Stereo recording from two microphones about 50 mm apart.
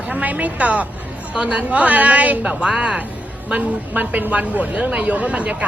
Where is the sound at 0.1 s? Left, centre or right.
Right.